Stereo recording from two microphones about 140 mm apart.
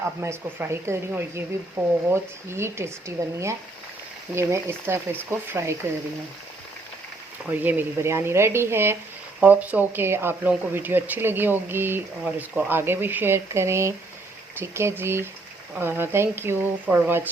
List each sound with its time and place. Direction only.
0.2 s speech: 20° right (ahead or behind)
4.4 s speech: 20° right (ahead or behind)
7.5 s speech: 10° right (ahead or behind)